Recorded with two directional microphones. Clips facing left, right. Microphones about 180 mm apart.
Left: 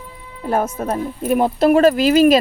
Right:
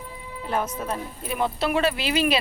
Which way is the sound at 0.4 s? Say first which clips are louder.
Left 7 dB; 50° left (ahead or behind).